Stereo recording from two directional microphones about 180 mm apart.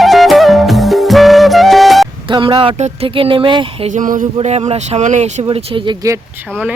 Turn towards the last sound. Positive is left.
turn(degrees=-40)  # may be behind; listen again after turning